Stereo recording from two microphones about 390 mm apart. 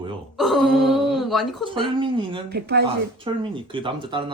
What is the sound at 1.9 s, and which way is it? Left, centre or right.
Speech, centre.